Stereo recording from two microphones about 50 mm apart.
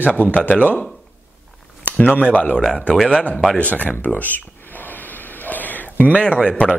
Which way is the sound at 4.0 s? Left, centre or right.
Left.